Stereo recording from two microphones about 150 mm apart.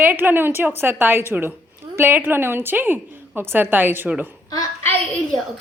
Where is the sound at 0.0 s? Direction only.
15° right (ahead or behind).